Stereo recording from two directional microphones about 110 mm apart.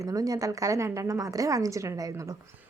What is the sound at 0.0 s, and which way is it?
A woman's voice, 30° right (ahead or behind).